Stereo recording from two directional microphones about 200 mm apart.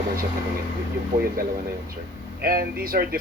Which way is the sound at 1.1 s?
45° right (ahead or behind).